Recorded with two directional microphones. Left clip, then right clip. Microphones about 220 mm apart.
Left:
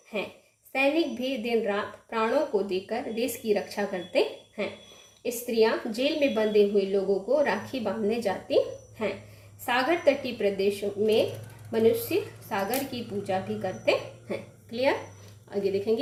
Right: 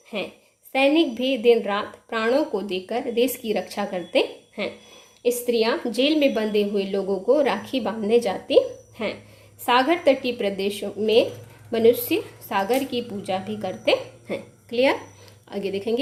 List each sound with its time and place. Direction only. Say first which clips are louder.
0.7 s a woman's voice: right 6 dB; 40° right (ahead or behind)